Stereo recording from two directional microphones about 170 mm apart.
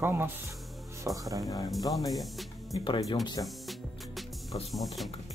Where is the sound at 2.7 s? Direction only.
25° left (ahead or behind).